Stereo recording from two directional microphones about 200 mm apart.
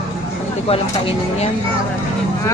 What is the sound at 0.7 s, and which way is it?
Music, 30° left (ahead or behind).